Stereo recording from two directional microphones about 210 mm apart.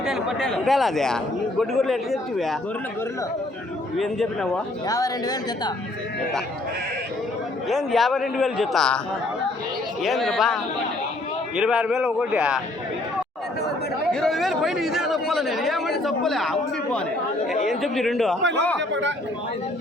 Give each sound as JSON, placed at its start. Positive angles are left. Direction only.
{"t": 0.0, "sound": "a man's voice", "side_deg": 0}
{"t": 3.9, "sound": "a man's voice", "side_deg": 0}
{"t": 4.9, "sound": "speech", "side_deg": 15}
{"t": 7.7, "sound": "a man's voice", "side_deg": 0}
{"t": 10.0, "sound": "a man's voice", "side_deg": 0}
{"t": 14.1, "sound": "a man's voice", "side_deg": 0}
{"t": 18.8, "sound": "speech", "side_deg": -60}